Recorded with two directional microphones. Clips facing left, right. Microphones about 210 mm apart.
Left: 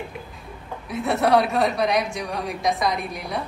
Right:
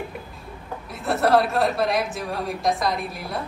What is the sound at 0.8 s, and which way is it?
A woman's voice, centre (ahead or behind).